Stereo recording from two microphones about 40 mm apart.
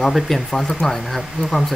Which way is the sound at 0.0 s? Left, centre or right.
Centre.